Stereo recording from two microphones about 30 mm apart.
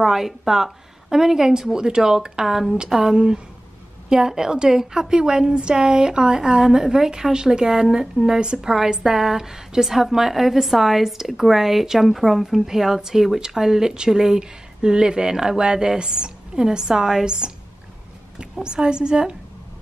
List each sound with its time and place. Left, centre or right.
0.0 s a woman's voice: centre
2.4 s a woman's voice: centre
2.9 s a woman's voice: centre